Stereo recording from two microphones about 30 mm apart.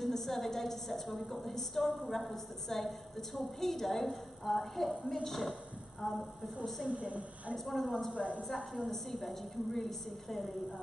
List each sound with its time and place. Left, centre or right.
0.1 s a woman's voice: centre
6.9 s a woman's voice: right
7.5 s a woman's voice: centre
8.1 s a woman's voice: right
8.5 s a woman's voice: centre